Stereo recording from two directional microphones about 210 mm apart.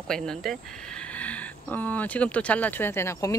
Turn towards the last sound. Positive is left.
turn(degrees=15)  # may be behind; listen again after turning